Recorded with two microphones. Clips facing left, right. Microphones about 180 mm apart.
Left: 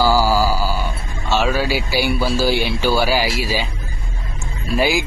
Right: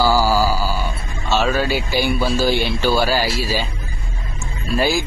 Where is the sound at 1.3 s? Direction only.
10° left (ahead or behind).